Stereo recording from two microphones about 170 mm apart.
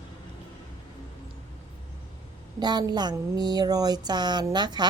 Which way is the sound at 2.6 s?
25° right (ahead or behind).